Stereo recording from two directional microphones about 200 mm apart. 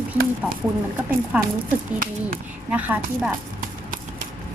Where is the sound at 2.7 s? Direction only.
5° right (ahead or behind).